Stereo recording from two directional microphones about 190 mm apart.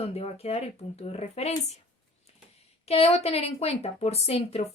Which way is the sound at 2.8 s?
30° left (ahead or behind).